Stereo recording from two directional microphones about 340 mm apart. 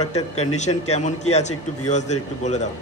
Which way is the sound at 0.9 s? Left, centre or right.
Centre.